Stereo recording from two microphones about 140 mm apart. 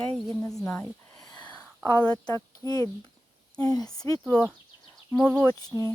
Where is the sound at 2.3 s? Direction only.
25° left (ahead or behind).